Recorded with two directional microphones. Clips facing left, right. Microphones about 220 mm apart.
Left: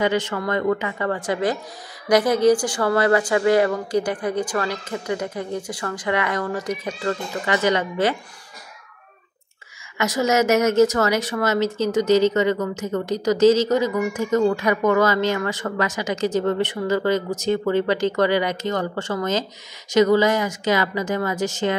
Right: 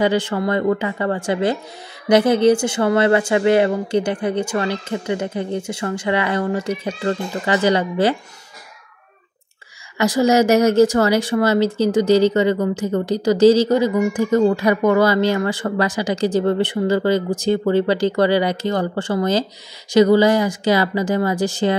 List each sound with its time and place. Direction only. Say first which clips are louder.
0.0 s speech: right 4 dB; 30° right (ahead or behind)
9.9 s speech: right 5 dB; 30° right (ahead or behind)